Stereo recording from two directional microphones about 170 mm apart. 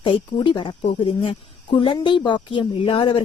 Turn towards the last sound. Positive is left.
turn(degrees=30)  # may be behind; listen again after turning